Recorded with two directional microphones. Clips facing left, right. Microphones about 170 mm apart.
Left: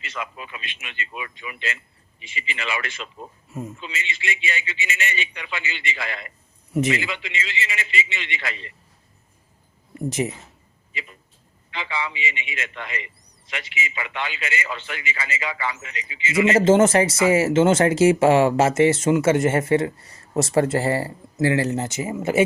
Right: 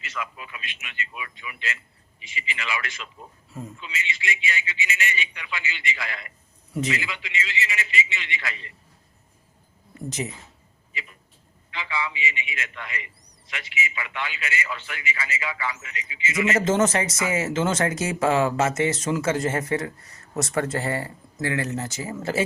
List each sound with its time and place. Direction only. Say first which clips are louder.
0.0 s a man's voice: left 2 dB; 25° left (ahead or behind)
11.7 s a man's voice: left 1 dB; 25° left (ahead or behind)